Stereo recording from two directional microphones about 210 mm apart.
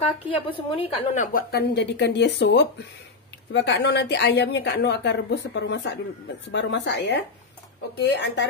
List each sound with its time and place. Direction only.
0.0 s a woman's voice: 25° left (ahead or behind); by 8.5 s 55° left (ahead or behind)